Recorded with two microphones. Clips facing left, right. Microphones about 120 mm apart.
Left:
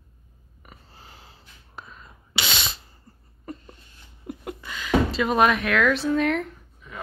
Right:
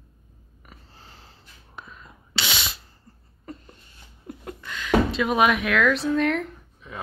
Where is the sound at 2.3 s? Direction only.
15° left (ahead or behind).